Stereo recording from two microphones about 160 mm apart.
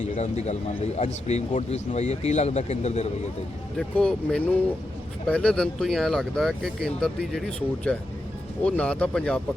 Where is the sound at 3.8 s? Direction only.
5° left (ahead or behind).